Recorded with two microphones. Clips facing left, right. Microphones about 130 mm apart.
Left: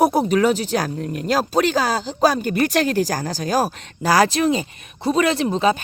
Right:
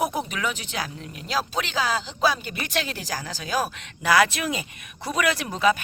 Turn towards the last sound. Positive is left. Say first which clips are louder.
# left 4 dB
turn(degrees=30)  # may be behind; listen again after turning